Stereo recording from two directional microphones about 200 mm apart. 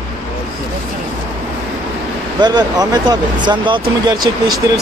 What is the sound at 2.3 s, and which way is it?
Speech, 20° right (ahead or behind).